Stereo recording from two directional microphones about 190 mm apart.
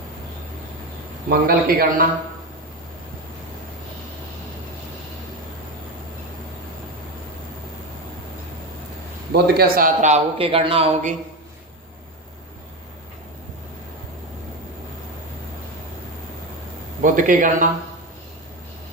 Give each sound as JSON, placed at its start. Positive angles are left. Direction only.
{"t": 1.3, "sound": "a man's voice", "side_deg": -50}
{"t": 9.3, "sound": "speech", "side_deg": -50}
{"t": 17.0, "sound": "a man's voice", "side_deg": -45}